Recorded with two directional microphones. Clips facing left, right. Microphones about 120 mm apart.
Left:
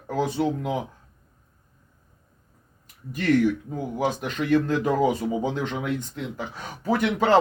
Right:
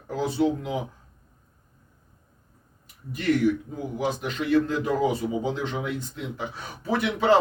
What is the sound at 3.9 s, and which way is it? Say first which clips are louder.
Speech: left 1 dB; 45° left (ahead or behind).